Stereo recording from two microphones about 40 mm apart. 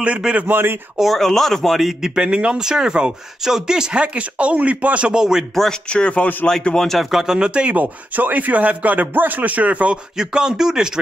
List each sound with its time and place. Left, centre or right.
0.5 s a man's voice: right
1.0 s speech: centre
2.0 s speech: right
4.0 s speech: right
5.1 s speech: centre
5.5 s speech: centre
5.9 s speech: left
6.5 s speech: centre
7.1 s speech: centre
7.3 s speech: right
7.7 s speech: right
10.1 s speech: centre